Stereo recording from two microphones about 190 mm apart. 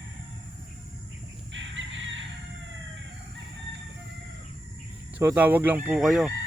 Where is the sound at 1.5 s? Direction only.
75° right (ahead or behind).